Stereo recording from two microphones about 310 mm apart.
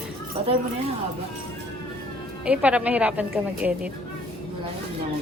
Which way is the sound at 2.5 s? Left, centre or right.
Centre.